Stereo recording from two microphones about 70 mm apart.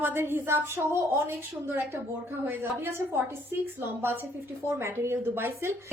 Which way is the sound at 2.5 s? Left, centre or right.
Right.